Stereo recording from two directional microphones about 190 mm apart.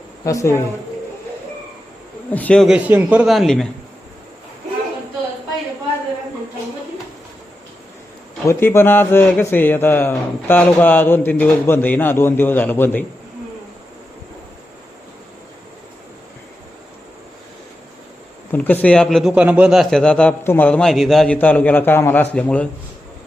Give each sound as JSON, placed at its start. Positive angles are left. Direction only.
{"t": 0.3, "sound": "a man's voice", "side_deg": 15}
{"t": 2.3, "sound": "a man's voice", "side_deg": 5}
{"t": 8.4, "sound": "a man's voice", "side_deg": 10}
{"t": 18.5, "sound": "a man's voice", "side_deg": 10}